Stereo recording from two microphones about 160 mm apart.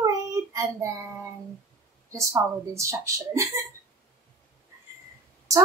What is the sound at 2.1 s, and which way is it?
Speech, 20° right (ahead or behind).